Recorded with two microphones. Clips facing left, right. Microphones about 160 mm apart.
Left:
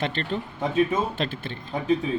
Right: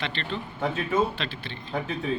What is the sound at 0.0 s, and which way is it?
Speech, 45° left (ahead or behind).